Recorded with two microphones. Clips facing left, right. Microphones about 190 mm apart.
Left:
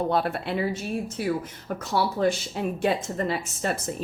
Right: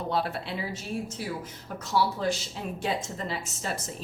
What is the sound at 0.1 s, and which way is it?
A woman's voice, 55° left (ahead or behind).